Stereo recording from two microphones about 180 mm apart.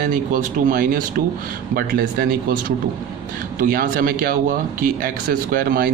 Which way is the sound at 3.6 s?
55° right (ahead or behind).